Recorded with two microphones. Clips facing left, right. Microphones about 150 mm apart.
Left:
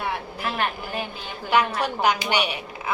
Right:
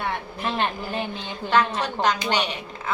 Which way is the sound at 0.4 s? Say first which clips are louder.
Right 2 dB; 25° right (ahead or behind).